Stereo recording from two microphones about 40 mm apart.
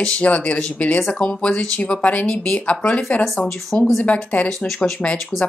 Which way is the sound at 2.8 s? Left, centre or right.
Left.